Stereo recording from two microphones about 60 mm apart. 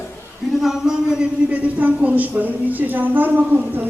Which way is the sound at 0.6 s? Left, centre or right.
Centre.